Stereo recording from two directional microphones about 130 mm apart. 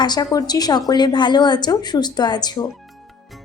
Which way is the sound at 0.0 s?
30° left (ahead or behind).